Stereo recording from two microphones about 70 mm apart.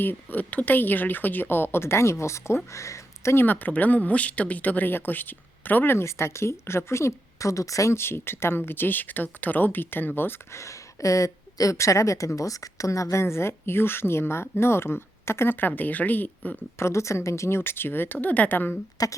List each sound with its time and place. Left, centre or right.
0.0 s speech: left
3.3 s speech: left
7.9 s speech: left
10.6 s speech: left
16.7 s speech: left
19.0 s speech: left